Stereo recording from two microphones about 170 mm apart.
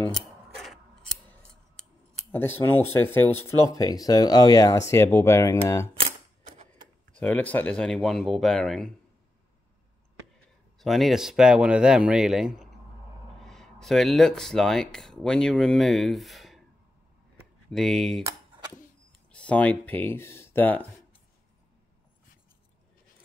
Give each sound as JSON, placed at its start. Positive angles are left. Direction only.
{"t": 0.1, "sound": "scissors", "side_deg": 0}
{"t": 2.3, "sound": "speech", "side_deg": 10}
{"t": 7.2, "sound": "speech", "side_deg": 10}
{"t": 10.8, "sound": "speech", "side_deg": 0}
{"t": 17.6, "sound": "speech", "side_deg": 0}
{"t": 19.3, "sound": "speech", "side_deg": 10}